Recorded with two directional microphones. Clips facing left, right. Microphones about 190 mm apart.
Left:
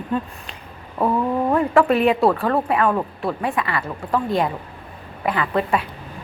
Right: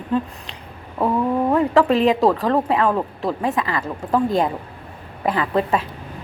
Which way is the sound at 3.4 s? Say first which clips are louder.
Right 2 dB; 20° right (ahead or behind).